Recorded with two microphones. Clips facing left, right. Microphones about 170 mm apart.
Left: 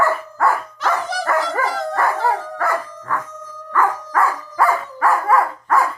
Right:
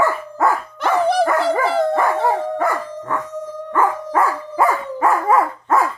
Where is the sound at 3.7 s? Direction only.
20° right (ahead or behind).